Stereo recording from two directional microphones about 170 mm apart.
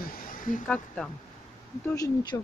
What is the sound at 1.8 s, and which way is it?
Speech, 20° left (ahead or behind).